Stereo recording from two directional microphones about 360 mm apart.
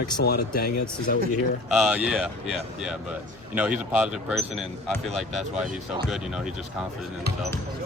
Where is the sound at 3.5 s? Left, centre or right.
Centre.